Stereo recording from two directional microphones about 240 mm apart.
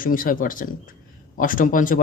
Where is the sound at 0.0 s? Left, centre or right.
Left.